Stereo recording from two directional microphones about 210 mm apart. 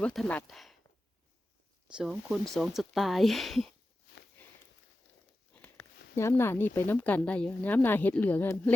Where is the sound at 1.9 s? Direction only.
5° right (ahead or behind).